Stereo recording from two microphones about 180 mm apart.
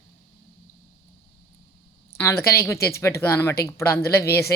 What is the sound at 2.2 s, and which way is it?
Speech, 15° left (ahead or behind).